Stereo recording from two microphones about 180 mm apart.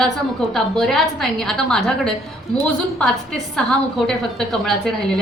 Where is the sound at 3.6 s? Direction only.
5° left (ahead or behind).